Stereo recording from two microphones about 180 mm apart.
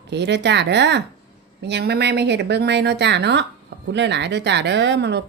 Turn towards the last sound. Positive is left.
turn(degrees=-70)  # may be behind; listen again after turning